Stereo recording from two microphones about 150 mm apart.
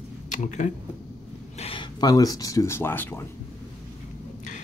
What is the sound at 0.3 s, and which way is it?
Speech, 55° left (ahead or behind).